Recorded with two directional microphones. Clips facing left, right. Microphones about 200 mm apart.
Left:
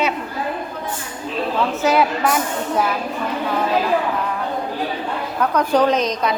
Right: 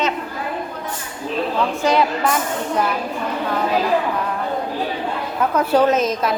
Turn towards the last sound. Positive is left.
turn(degrees=-5)  # may be behind; listen again after turning